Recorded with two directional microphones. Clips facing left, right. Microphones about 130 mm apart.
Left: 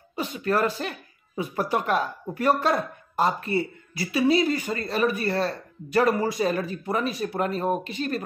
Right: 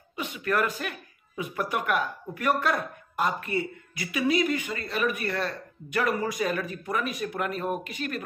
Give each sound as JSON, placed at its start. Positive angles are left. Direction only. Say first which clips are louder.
{"t": 0.1, "sound": "speech", "louder": "left 3 dB", "side_deg": 35}